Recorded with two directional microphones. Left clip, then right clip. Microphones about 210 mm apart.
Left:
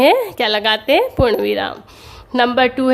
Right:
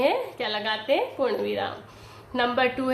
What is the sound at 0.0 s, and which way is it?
A woman's voice, 50° left (ahead or behind).